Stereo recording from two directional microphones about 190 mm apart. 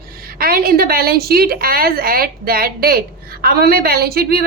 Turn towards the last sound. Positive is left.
turn(degrees=-55)  # may be behind; listen again after turning